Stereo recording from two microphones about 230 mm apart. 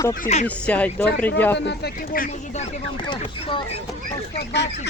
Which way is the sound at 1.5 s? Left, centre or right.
Left.